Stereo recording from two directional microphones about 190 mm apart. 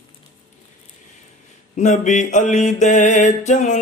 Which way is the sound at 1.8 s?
40° left (ahead or behind).